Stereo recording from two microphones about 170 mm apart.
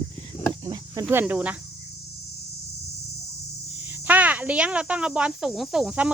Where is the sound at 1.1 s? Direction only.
10° right (ahead or behind).